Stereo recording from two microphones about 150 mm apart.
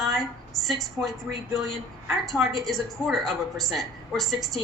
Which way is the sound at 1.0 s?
20° right (ahead or behind).